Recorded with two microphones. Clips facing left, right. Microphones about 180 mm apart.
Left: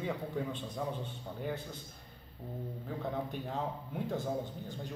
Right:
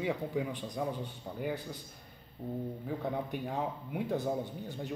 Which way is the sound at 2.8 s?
15° right (ahead or behind).